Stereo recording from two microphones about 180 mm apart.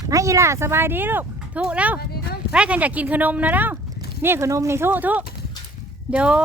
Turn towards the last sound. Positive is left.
turn(degrees=-5)  # may be behind; listen again after turning